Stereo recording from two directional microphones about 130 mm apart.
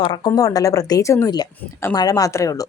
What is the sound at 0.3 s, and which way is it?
Speech, 30° left (ahead or behind).